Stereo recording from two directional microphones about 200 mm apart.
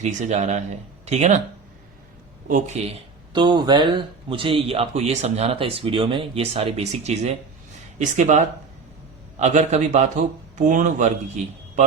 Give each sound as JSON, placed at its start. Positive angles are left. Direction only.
{"t": 0.0, "sound": "speech", "side_deg": -35}
{"t": 2.5, "sound": "speech", "side_deg": -40}
{"t": 3.3, "sound": "speech", "side_deg": -20}